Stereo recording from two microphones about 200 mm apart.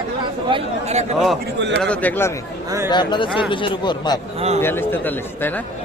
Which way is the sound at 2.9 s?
20° left (ahead or behind).